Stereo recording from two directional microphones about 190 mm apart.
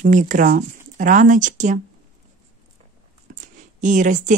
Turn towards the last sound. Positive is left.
turn(degrees=-40)  # may be behind; listen again after turning